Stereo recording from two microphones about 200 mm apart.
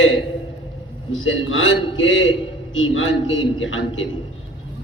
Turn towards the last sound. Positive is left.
turn(degrees=75)  # may be behind; listen again after turning